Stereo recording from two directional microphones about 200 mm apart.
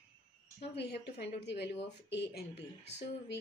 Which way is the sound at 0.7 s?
55° left (ahead or behind).